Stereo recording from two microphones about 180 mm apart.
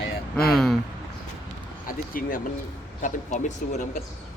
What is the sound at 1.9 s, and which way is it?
Speech, 50° left (ahead or behind).